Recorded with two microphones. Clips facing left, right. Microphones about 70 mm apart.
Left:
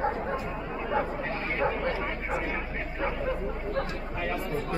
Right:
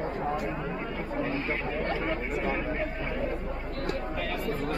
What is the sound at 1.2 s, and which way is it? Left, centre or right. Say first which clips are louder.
Speech: left 2 dB; left.